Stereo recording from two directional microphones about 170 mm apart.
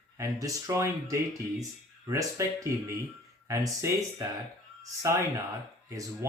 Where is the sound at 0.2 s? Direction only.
20° right (ahead or behind).